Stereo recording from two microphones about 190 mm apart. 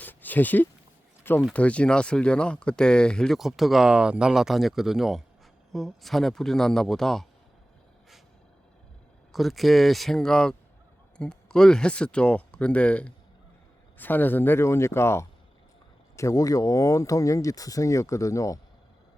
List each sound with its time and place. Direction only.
0.0 s a sound: 10° left (ahead or behind)
1.4 s speech: 5° left (ahead or behind)
9.3 s speech: centre (ahead or behind); by 18.6 s 15° left (ahead or behind)